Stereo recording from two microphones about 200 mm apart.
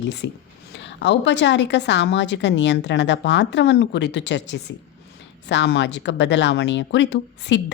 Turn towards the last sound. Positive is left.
turn(degrees=65)  # may be behind; listen again after turning